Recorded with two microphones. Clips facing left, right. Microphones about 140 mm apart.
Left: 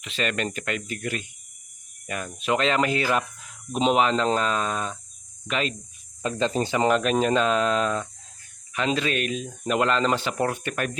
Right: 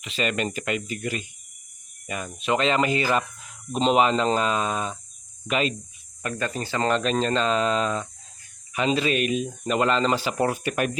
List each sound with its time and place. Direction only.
0.0 s speech: centre (ahead or behind)
6.2 s speech: 25° left (ahead or behind); by 10.9 s 10° right (ahead or behind)